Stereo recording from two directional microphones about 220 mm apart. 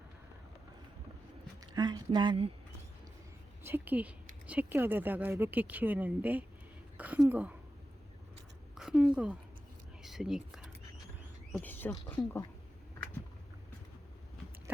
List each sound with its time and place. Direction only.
1.7 s speech: 20° right (ahead or behind)
3.6 s a woman's voice: 10° right (ahead or behind)
8.7 s a sound: 5° right (ahead or behind)
9.1 s speech: 5° right (ahead or behind)
10.0 s a sound: centre (ahead or behind)
11.5 s speech: 10° left (ahead or behind)